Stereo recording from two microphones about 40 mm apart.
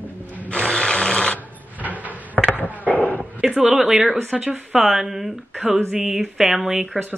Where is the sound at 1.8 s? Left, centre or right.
Left.